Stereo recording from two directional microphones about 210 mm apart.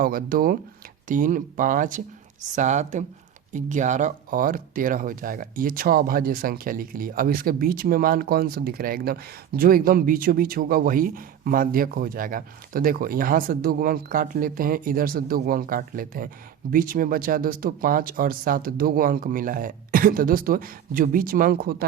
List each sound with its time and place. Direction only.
0.0 s speech: 40° right (ahead or behind)